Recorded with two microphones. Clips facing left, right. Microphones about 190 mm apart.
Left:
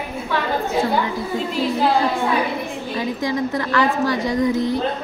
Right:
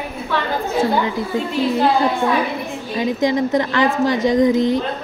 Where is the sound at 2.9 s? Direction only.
20° right (ahead or behind).